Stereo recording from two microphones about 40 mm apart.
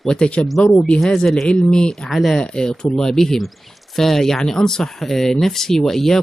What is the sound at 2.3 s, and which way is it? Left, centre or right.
Speech, centre.